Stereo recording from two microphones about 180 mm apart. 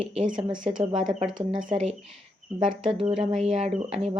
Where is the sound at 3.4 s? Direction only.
35° right (ahead or behind).